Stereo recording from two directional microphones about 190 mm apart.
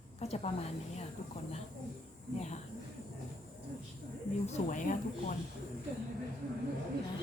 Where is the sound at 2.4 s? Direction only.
35° left (ahead or behind).